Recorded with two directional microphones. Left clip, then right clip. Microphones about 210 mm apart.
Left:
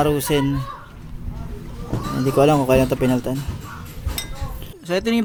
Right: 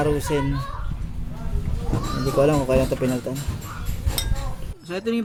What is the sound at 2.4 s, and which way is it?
Speech, 40° left (ahead or behind).